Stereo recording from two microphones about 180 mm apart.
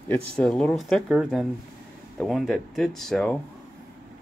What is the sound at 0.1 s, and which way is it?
Speech, 5° left (ahead or behind).